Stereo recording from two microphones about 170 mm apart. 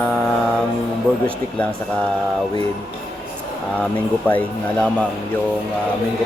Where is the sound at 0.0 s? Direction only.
5° left (ahead or behind).